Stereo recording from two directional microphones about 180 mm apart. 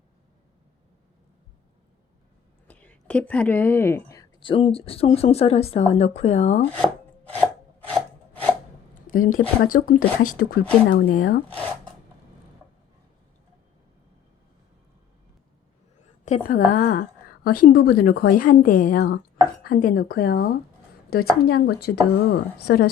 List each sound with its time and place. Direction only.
2.6 s speech: 10° left (ahead or behind); by 6.6 s 40° left (ahead or behind)
7.3 s chopping: 10° left (ahead or behind)
9.0 s a woman's voice: 50° left (ahead or behind)
16.2 s a woman's voice: 45° left (ahead or behind)